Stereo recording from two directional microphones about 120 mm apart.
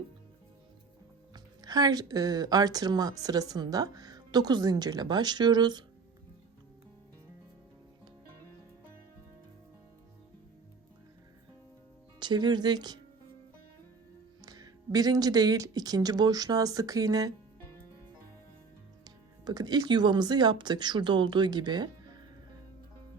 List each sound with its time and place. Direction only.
1.3 s speech: 35° right (ahead or behind)
12.2 s speech: 40° right (ahead or behind)
14.4 s speech: 30° right (ahead or behind)
19.0 s speech: 35° right (ahead or behind)